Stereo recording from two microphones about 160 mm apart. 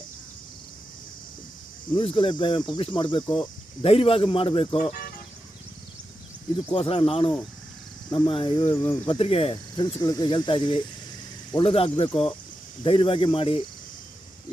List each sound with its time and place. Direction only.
1.9 s speech: 30° left (ahead or behind)
6.7 s speech: 35° left (ahead or behind)
8.7 s speech: 20° left (ahead or behind)
9.0 s speech: 35° left (ahead or behind)